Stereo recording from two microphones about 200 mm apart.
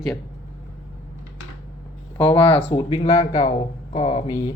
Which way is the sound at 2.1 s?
25° left (ahead or behind).